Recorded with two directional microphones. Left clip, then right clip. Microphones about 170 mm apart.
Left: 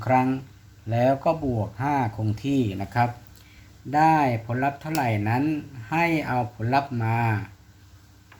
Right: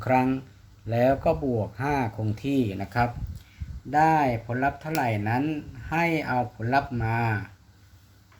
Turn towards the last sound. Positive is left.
turn(degrees=-10)  # may be behind; listen again after turning